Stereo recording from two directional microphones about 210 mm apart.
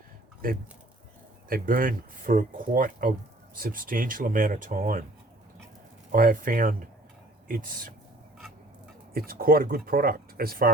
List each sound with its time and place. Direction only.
1.5 s speech: 45° right (ahead or behind)
6.1 s speech: 40° right (ahead or behind)
9.1 s speech: 45° right (ahead or behind)